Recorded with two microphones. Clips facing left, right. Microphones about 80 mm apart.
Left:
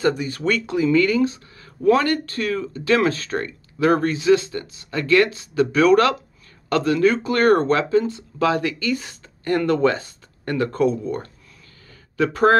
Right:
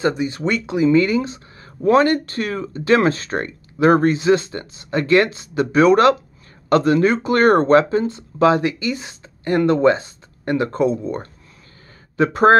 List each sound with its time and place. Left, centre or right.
0.0 s speech: right